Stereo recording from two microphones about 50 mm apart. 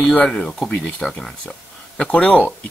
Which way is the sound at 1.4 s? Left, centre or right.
Left.